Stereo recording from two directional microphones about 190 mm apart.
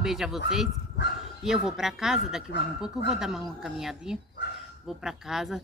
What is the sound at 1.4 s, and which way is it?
Speech, 5° right (ahead or behind).